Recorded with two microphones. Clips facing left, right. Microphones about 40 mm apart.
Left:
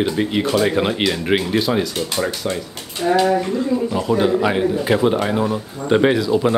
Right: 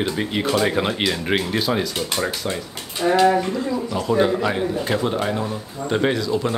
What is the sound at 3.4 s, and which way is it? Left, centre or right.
Speech, centre.